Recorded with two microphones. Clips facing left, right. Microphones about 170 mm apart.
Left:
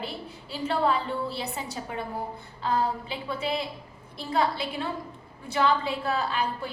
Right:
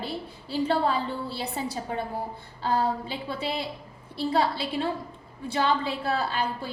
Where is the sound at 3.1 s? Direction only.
30° right (ahead or behind).